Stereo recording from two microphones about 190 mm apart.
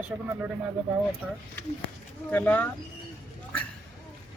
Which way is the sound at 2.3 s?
10° left (ahead or behind).